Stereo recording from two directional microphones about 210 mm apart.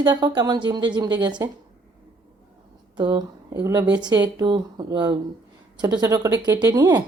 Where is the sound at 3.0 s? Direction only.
20° right (ahead or behind).